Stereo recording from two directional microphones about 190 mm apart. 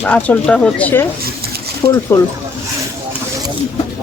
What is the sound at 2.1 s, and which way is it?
Speech, 10° left (ahead or behind).